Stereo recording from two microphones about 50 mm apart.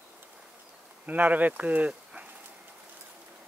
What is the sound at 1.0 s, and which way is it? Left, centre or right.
Speech, right.